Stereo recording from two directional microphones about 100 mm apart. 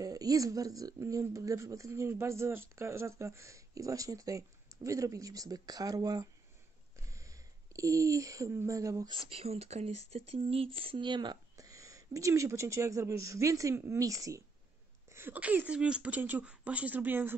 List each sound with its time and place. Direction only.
0.0 s speech: 35° right (ahead or behind)
9.3 s speech: 85° right; by 11.1 s 70° right (ahead or behind)
11.1 s speech: 50° right (ahead or behind)
11.5 s speech: 35° right (ahead or behind)
15.0 s speech: 20° right (ahead or behind)